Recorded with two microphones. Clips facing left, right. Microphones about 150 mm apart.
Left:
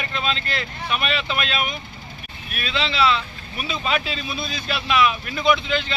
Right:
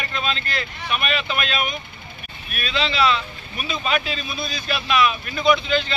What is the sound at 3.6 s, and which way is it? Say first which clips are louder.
A man's voice: right 1 dB; 25° left (ahead or behind).